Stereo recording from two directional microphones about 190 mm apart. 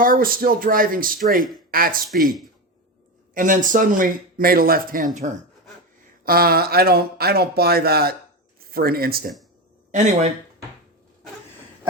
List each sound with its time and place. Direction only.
0.0 s speech: 50° right (ahead or behind)
3.3 s speech: 45° right (ahead or behind)
6.2 s speech: 50° right (ahead or behind)
9.9 s speech: 35° right (ahead or behind)